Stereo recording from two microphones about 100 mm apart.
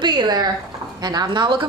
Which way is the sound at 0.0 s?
45° right (ahead or behind).